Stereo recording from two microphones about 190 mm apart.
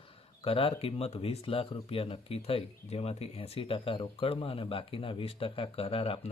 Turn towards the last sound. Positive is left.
turn(degrees=30)  # may be behind; listen again after turning